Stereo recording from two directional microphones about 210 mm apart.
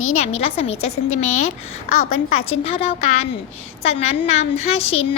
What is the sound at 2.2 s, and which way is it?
A woman's voice, 30° left (ahead or behind).